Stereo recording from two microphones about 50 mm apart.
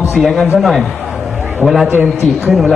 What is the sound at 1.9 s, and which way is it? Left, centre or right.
Speech, right.